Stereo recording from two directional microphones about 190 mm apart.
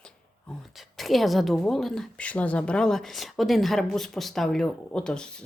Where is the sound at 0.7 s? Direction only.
Centre (ahead or behind).